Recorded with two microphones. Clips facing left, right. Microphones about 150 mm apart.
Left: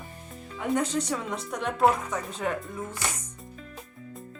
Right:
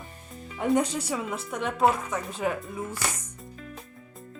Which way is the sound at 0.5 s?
15° right (ahead or behind).